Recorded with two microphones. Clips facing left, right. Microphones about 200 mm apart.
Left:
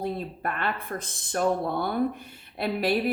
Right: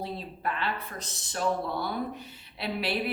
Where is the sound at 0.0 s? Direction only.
50° left (ahead or behind).